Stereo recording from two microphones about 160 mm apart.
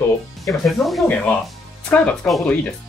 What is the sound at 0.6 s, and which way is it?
Speech, centre (ahead or behind).